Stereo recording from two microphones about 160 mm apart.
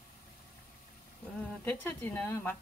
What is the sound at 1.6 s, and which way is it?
Speech, 10° left (ahead or behind).